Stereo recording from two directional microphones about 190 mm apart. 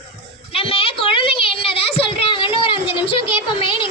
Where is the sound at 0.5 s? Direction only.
30° left (ahead or behind).